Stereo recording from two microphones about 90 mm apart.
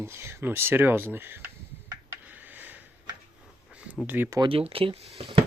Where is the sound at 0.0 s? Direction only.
25° right (ahead or behind).